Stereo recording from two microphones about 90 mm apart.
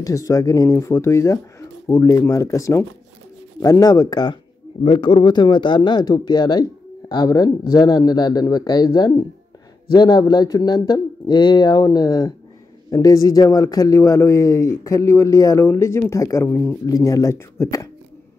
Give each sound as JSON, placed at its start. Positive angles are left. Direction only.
{"t": 0.0, "sound": "speech", "side_deg": 40}
{"t": 4.8, "sound": "speech", "side_deg": 80}
{"t": 16.4, "sound": "speech", "side_deg": 25}
{"t": 16.8, "sound": "speech", "side_deg": 40}